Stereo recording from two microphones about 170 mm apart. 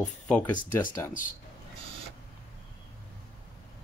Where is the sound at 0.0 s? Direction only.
10° left (ahead or behind).